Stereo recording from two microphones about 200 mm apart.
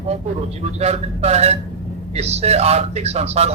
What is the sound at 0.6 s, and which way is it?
A man's voice, 30° right (ahead or behind).